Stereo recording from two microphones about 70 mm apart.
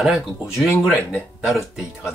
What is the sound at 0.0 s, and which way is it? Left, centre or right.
Speech, centre.